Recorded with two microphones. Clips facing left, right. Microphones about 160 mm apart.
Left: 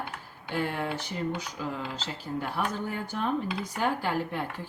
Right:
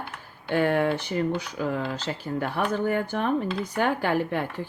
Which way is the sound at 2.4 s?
65° right (ahead or behind).